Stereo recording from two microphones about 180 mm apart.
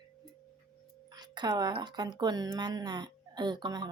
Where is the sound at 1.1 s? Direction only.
25° right (ahead or behind).